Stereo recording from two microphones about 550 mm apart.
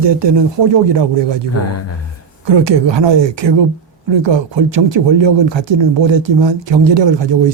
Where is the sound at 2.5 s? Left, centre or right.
Right.